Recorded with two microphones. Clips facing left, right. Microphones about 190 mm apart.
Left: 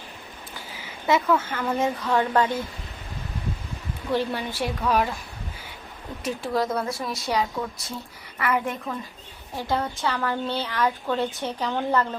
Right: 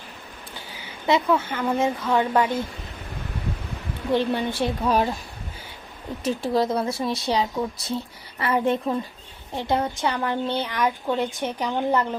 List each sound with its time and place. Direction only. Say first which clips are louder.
1.0 s a woman's voice: right 1 dB; 20° right (ahead or behind)
4.1 s speech: right 3 dB; 20° right (ahead or behind)
6.2 s a woman's voice: right 3 dB; 25° right (ahead or behind)